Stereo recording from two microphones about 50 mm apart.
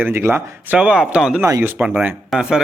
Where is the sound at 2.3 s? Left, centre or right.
Centre.